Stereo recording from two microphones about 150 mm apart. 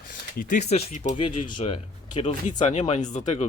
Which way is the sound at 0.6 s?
45° left (ahead or behind).